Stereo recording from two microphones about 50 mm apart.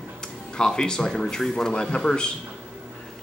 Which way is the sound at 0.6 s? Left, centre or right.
Centre.